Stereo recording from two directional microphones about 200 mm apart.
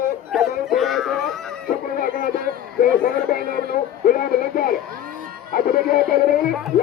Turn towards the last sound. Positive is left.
turn(degrees=0)  # may be behind; listen again after turning